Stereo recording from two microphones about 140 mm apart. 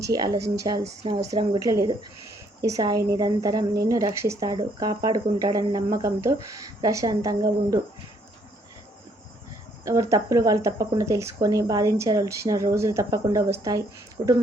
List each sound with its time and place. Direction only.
0.0 s a woman's voice: 25° right (ahead or behind)
9.8 s a woman's voice: 20° right (ahead or behind)